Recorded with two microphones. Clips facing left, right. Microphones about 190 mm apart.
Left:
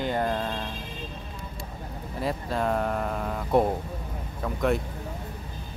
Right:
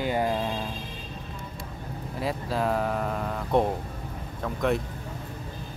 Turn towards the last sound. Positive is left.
turn(degrees=0)  # may be behind; listen again after turning